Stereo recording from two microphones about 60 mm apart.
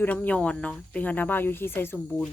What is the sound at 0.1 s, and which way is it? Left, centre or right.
Speech, left.